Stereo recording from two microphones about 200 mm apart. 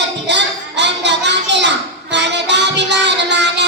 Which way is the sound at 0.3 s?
60° right (ahead or behind).